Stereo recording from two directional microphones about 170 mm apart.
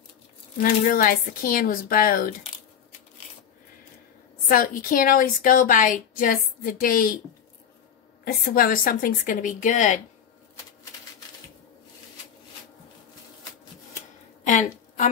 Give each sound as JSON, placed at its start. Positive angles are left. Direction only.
{"t": 0.6, "sound": "a woman's voice", "side_deg": 55}
{"t": 4.5, "sound": "a woman's voice", "side_deg": 55}
{"t": 8.5, "sound": "speech", "side_deg": 55}
{"t": 14.4, "sound": "a sound", "side_deg": 45}